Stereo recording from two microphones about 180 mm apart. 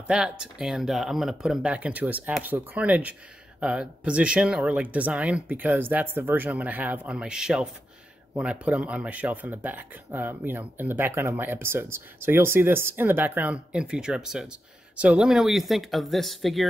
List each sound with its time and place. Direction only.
0.0 s speech: 5° right (ahead or behind)